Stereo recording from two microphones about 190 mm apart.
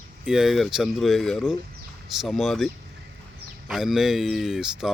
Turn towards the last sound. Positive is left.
turn(degrees=-5)  # may be behind; listen again after turning